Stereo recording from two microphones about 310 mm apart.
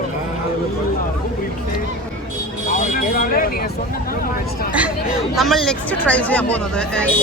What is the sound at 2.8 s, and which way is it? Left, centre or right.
Speech, left.